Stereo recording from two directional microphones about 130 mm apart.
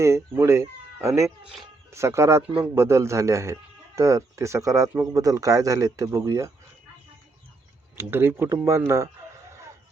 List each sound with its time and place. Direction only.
0.0 s speech: 20° right (ahead or behind)
7.9 s speech: 15° right (ahead or behind)